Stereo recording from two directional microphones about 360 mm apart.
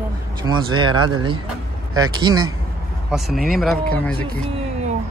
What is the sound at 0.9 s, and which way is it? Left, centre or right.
Speech, right.